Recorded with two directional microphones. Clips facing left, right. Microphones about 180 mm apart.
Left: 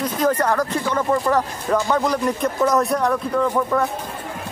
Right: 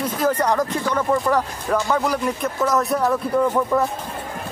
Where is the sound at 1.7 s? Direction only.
Centre (ahead or behind).